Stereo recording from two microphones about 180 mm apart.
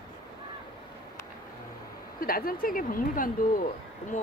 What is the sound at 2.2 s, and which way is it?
Speech, 55° left (ahead or behind).